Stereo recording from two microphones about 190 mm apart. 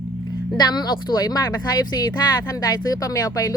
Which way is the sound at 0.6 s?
20° left (ahead or behind).